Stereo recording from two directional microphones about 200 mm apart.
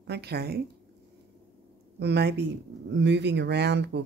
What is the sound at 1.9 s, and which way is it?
Speech, 55° right (ahead or behind).